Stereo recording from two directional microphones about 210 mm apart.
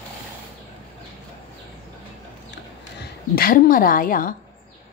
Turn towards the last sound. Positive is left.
turn(degrees=40)  # may be behind; listen again after turning